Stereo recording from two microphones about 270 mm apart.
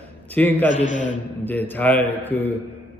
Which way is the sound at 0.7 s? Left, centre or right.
Left.